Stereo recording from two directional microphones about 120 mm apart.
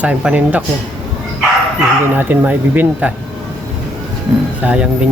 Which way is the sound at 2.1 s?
15° right (ahead or behind).